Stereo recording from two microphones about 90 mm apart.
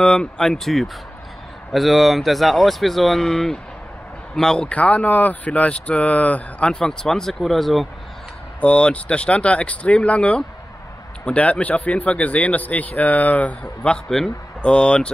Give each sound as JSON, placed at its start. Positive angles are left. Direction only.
{"t": 0.0, "sound": "speech", "side_deg": 10}
{"t": 8.5, "sound": "speech", "side_deg": 15}